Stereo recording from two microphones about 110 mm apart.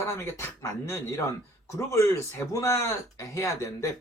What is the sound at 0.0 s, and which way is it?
Speech, 25° left (ahead or behind).